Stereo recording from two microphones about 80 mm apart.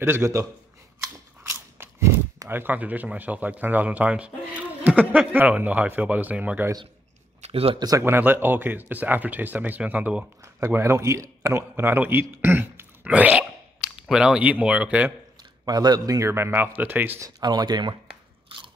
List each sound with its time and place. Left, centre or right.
0.0 s a man's voice: right
1.5 s biting: right
2.5 s speech: right
8.0 s speech: right
10.4 s a man's voice: right; by 13.5 s centre
13.7 s speech: centre
15.6 s a man's voice: right
16.3 s speech: right
17.4 s a man's voice: right